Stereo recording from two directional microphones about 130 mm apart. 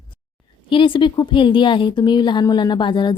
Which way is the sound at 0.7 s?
40° left (ahead or behind).